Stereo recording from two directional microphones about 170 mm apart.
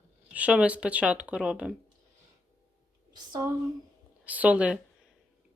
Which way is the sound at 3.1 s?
25° right (ahead or behind).